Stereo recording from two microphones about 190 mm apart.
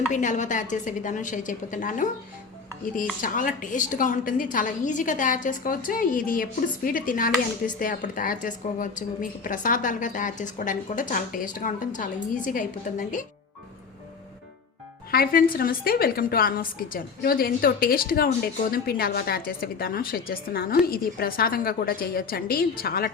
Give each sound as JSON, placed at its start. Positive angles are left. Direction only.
{"t": 0.1, "sound": "a woman's voice", "side_deg": 40}
{"t": 3.2, "sound": "a woman's voice", "side_deg": 45}
{"t": 15.1, "sound": "a woman's voice", "side_deg": 50}